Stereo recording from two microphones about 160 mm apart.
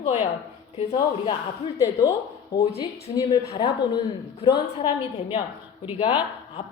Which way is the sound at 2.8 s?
25° left (ahead or behind).